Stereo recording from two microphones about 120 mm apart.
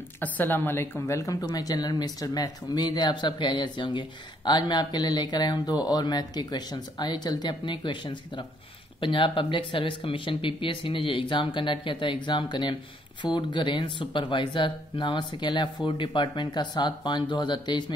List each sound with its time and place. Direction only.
0.2 s speech: 15° left (ahead or behind); by 17.9 s 40° left (ahead or behind)